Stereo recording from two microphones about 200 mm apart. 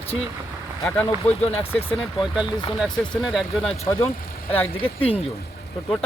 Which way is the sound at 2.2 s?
Centre (ahead or behind).